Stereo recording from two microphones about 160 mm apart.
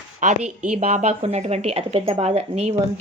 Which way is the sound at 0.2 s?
55° right (ahead or behind).